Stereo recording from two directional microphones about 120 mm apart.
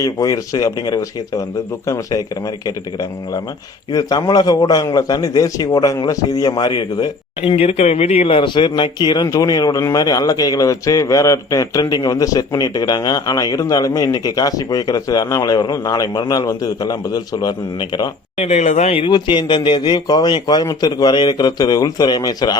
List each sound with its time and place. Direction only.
0.0 s speech: 30° left (ahead or behind)
7.5 s speech: 60° left (ahead or behind); by 18.1 s 35° left (ahead or behind)
18.3 s speech: 70° left (ahead or behind); by 22.5 s 35° left (ahead or behind)